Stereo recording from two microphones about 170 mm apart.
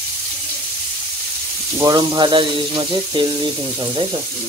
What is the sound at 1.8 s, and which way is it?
Speech, 25° right (ahead or behind).